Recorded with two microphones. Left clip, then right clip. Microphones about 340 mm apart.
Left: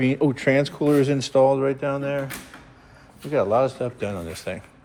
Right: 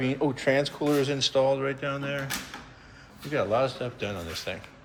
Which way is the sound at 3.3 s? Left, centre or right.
Centre.